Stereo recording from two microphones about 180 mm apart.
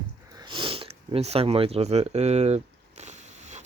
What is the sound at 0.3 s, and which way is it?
Speech, 25° right (ahead or behind).